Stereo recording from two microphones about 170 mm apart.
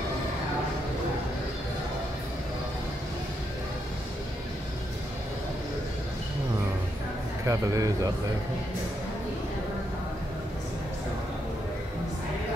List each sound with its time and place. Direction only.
7.4 s speech: 20° right (ahead or behind)